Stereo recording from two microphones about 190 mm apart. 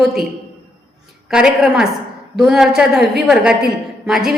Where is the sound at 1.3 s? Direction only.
5° right (ahead or behind).